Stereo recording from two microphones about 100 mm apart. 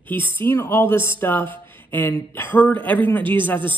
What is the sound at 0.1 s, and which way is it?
Speech, 20° left (ahead or behind).